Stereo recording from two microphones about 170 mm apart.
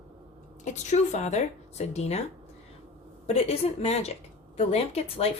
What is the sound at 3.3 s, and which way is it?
Speech, 35° left (ahead or behind).